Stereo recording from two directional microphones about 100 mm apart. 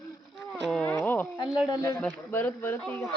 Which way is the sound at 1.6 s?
40° left (ahead or behind).